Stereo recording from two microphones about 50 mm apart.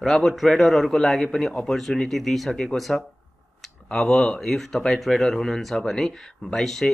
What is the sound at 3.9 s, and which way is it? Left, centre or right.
Speech, centre.